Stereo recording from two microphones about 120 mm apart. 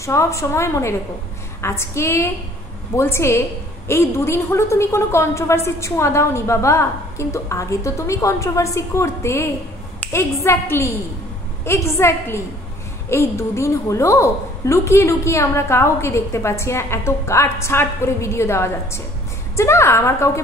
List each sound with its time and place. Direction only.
0.0 s a woman's voice: 25° left (ahead or behind)